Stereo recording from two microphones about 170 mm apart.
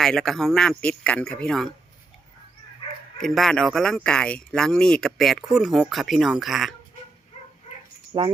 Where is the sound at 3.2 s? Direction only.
Centre (ahead or behind).